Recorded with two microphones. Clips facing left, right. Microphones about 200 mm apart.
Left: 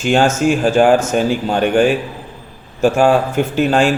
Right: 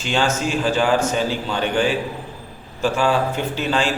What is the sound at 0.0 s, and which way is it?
A man's voice, 50° left (ahead or behind).